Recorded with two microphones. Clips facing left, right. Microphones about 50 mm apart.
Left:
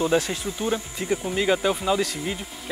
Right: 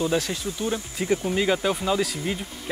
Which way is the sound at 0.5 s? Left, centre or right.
Left.